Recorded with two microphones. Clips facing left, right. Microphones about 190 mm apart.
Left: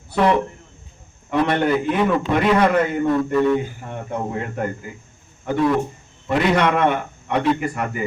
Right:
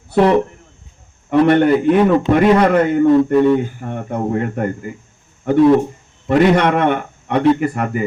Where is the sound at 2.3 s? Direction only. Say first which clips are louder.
Right 6 dB; 40° right (ahead or behind).